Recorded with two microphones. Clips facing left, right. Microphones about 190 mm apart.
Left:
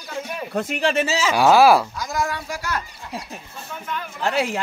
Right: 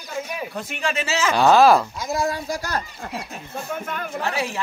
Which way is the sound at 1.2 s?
10° left (ahead or behind).